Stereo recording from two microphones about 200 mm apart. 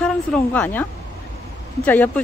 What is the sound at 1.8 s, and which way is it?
Speech, 10° left (ahead or behind).